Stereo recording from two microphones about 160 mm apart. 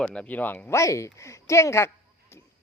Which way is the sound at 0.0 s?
5° left (ahead or behind).